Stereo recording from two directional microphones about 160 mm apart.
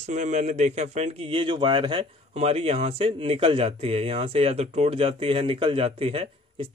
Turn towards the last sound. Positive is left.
turn(degrees=-35)  # may be behind; listen again after turning